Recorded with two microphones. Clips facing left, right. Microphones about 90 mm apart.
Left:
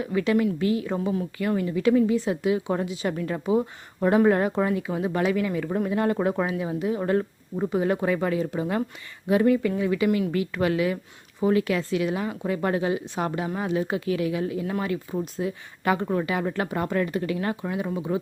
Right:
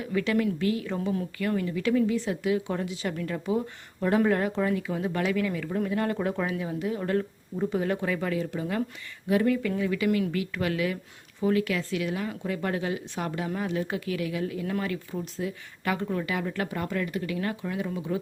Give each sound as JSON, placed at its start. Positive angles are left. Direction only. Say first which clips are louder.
{"t": 0.0, "sound": "a woman's voice", "louder": "left 3 dB", "side_deg": 25}